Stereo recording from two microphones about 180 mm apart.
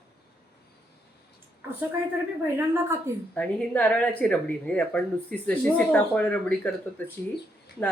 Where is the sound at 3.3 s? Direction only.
10° left (ahead or behind).